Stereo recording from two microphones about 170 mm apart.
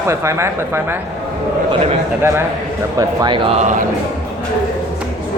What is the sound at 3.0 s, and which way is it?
Speech, 25° right (ahead or behind).